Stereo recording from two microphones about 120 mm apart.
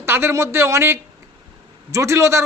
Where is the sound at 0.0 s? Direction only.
20° right (ahead or behind).